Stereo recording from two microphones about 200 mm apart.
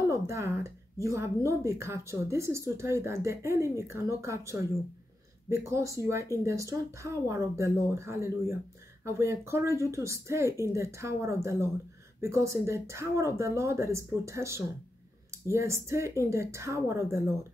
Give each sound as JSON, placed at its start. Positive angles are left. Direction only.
{"t": 0.1, "sound": "a woman's voice", "side_deg": -15}